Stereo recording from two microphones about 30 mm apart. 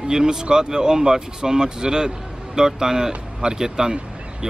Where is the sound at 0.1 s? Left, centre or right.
Right.